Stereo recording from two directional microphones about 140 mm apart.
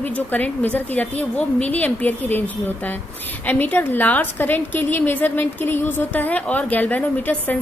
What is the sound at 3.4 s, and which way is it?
A woman's voice, 15° left (ahead or behind).